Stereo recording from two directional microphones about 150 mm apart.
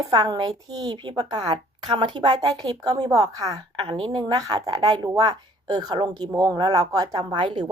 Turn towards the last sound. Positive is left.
turn(degrees=-25)  # may be behind; listen again after turning